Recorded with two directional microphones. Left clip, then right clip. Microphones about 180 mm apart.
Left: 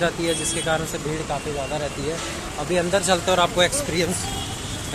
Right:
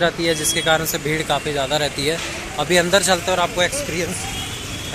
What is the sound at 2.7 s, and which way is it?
Speech, 15° right (ahead or behind).